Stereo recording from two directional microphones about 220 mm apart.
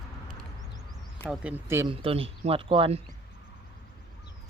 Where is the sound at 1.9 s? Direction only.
25° right (ahead or behind).